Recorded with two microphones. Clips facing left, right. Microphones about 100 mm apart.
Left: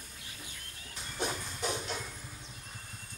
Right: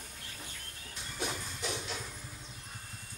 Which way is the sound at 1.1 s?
10° left (ahead or behind).